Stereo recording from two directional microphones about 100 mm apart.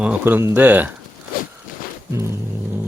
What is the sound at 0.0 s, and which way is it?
Speech, 15° right (ahead or behind).